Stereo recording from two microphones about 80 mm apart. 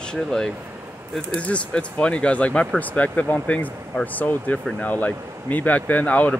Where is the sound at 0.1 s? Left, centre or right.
Centre.